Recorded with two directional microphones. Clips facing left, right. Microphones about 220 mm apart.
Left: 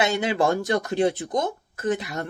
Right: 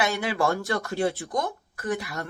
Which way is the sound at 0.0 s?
20° left (ahead or behind).